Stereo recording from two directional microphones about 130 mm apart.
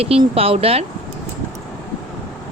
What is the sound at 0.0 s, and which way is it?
Speech, 50° right (ahead or behind).